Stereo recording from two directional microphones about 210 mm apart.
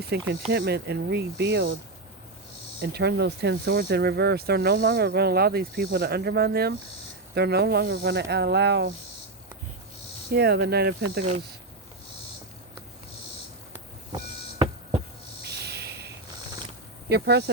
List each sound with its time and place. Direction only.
0.1 s speech: 50° right (ahead or behind)
2.8 s speech: 50° right (ahead or behind)
10.3 s speech: 50° right (ahead or behind)
15.4 s a sound: 50° right (ahead or behind)
17.1 s speech: 50° right (ahead or behind)